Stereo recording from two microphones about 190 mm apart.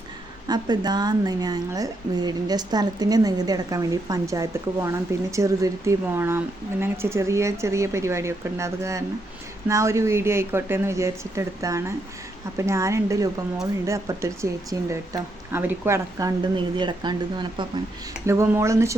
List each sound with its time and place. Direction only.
0.4 s a woman's voice: 20° right (ahead or behind)